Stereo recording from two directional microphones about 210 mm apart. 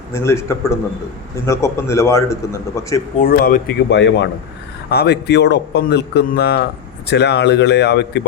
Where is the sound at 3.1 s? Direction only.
40° left (ahead or behind).